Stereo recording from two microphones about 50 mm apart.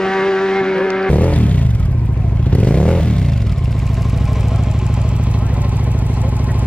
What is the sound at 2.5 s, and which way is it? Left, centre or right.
Vehicle, left.